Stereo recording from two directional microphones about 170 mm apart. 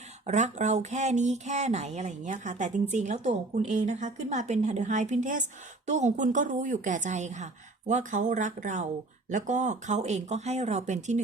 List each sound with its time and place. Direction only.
0.3 s speech: 45° right (ahead or behind)